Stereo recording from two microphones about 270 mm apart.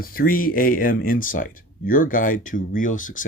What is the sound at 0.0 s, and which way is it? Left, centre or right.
Speech, left.